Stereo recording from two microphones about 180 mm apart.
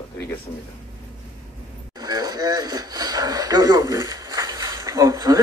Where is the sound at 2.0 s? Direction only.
20° right (ahead or behind).